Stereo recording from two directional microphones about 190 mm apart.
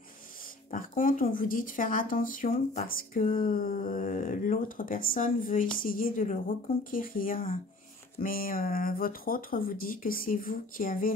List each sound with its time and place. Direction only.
0.7 s speech: 45° left (ahead or behind)